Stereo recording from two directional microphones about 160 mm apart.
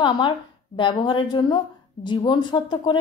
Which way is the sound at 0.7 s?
30° left (ahead or behind).